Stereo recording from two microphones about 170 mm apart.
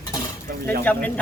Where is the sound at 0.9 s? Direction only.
10° left (ahead or behind).